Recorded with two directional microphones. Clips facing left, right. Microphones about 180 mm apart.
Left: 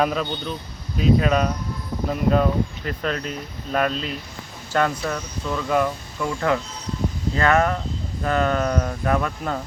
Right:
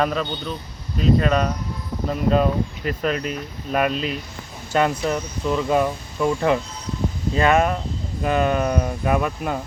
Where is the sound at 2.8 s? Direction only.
10° right (ahead or behind).